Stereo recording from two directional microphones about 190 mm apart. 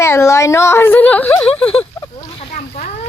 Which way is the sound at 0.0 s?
15° left (ahead or behind).